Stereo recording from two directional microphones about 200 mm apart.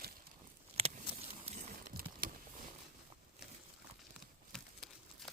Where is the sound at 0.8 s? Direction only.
30° right (ahead or behind).